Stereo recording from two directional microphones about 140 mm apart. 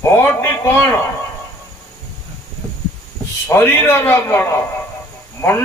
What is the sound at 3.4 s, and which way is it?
A man's voice, 15° left (ahead or behind).